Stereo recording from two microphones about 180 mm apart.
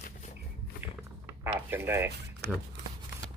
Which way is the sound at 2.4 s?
65° right (ahead or behind).